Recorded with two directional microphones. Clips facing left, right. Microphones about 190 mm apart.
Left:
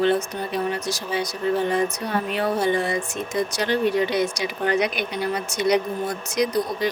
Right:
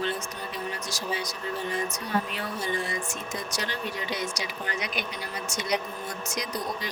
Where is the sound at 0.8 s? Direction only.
65° left (ahead or behind).